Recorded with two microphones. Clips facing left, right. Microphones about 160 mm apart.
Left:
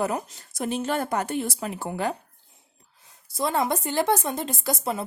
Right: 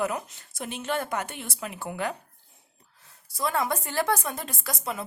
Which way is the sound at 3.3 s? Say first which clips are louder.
Left 3 dB; 25° left (ahead or behind).